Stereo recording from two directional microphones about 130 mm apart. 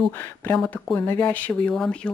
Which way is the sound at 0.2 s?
15° left (ahead or behind).